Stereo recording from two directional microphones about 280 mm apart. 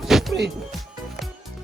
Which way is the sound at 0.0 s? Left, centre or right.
Centre.